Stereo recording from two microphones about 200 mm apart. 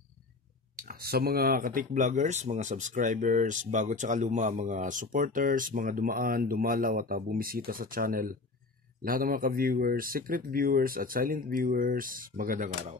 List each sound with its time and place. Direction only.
0.7 s speech: 45° right (ahead or behind)